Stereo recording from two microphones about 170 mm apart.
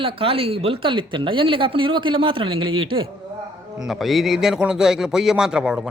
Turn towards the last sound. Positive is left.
turn(degrees=-5)  # may be behind; listen again after turning